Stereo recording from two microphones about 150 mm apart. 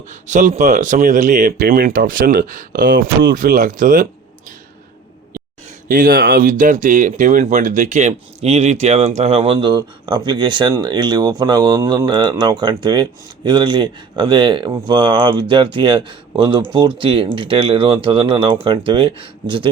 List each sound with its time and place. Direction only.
0.1 s speech: 55° right (ahead or behind)
5.9 s speech: 70° right (ahead or behind); by 19.6 s 35° right (ahead or behind)